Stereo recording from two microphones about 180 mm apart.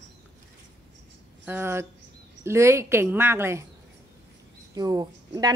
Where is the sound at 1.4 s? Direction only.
10° right (ahead or behind).